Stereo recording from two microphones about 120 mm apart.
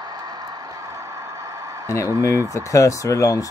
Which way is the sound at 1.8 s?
25° left (ahead or behind).